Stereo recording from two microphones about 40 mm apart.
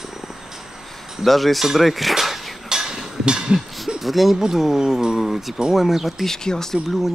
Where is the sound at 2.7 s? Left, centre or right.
Centre.